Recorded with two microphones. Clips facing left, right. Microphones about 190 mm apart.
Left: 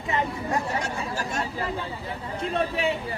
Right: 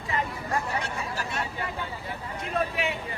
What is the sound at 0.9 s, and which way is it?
Vehicle, 30° left (ahead or behind).